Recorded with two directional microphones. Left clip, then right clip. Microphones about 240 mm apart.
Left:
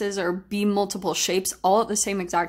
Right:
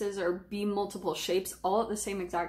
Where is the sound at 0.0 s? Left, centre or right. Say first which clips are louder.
Left 6 dB; left.